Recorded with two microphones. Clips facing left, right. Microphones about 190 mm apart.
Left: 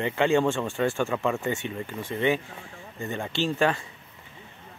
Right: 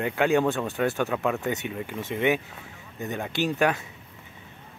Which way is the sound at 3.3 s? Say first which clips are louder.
Even; 15° right (ahead or behind).